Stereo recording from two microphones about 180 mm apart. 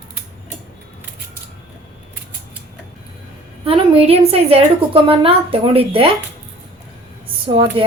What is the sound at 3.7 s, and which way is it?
A woman's voice, 30° right (ahead or behind).